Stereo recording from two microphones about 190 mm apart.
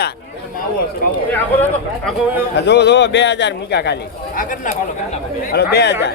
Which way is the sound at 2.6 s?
65° left (ahead or behind).